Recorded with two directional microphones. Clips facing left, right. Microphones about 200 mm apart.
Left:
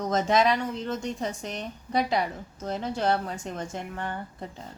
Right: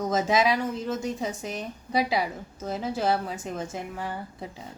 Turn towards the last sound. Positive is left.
turn(degrees=-5)  # may be behind; listen again after turning